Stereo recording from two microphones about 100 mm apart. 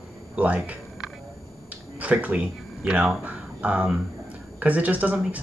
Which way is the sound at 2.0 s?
15° right (ahead or behind).